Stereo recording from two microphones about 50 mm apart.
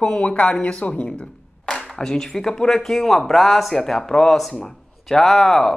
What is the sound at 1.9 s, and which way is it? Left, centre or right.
Speech, centre.